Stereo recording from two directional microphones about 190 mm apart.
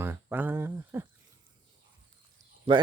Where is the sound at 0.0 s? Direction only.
10° right (ahead or behind).